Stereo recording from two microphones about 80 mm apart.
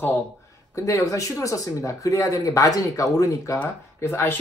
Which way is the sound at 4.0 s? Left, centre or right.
Left.